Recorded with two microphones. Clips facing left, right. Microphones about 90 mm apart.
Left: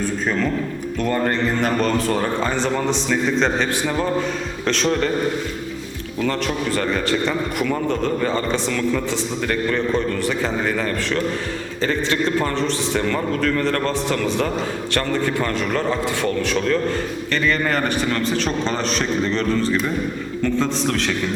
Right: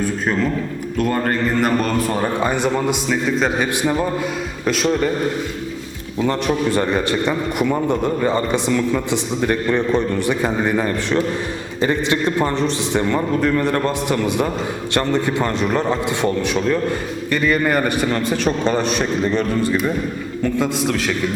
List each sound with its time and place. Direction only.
0.9 s a man's voice: 5° right (ahead or behind)
6.1 s a man's voice: 20° right (ahead or behind)